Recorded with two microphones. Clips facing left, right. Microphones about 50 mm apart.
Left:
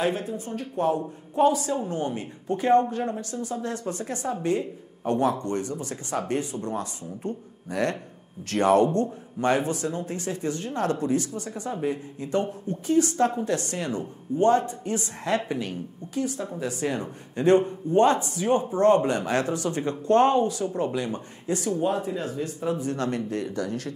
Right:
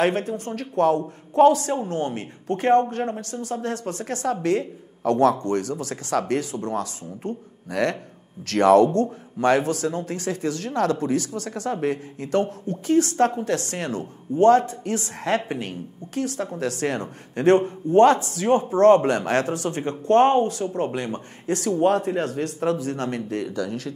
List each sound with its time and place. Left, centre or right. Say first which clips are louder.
0.0 s speech: right 4 dB; right
8.5 s speech: right 4 dB; right
22.9 s speech: right 1 dB; right